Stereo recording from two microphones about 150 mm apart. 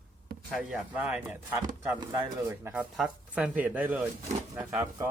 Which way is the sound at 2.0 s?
20° right (ahead or behind).